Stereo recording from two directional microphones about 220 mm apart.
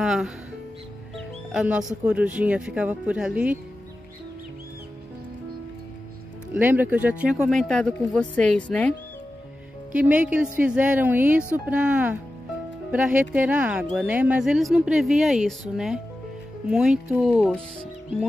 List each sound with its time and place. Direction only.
0.0 s music: centre (ahead or behind)
2.0 s speech: 5° right (ahead or behind)
6.5 s speech: 10° right (ahead or behind)
9.9 s a woman's voice: 5° right (ahead or behind)